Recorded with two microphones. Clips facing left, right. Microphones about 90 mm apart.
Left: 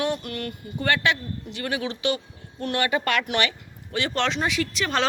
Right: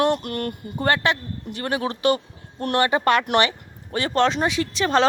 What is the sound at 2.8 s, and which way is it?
Speech, 35° right (ahead or behind).